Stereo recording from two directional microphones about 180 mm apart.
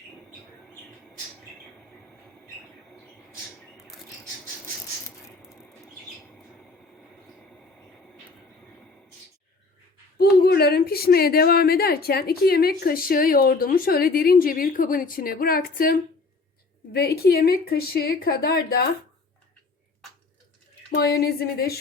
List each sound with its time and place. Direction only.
3.8 s a sound: centre (ahead or behind)
5.4 s bird flight: 5° right (ahead or behind)
10.2 s a woman's voice: 60° left (ahead or behind)
20.9 s a woman's voice: 60° left (ahead or behind)